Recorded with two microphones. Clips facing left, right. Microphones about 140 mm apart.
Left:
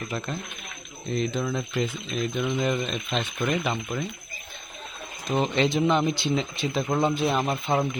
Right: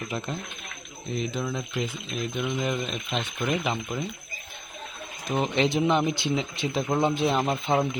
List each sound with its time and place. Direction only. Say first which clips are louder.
0.1 s speech: even; 20° right (ahead or behind)
1.1 s speech: left 3 dB; 5° right (ahead or behind)
5.7 s a man's voice: left 1 dB; 15° right (ahead or behind)